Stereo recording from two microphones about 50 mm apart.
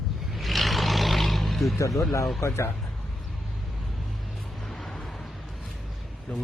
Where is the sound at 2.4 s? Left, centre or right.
Left.